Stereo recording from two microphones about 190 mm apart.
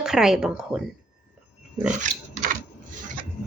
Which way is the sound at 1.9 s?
40° right (ahead or behind).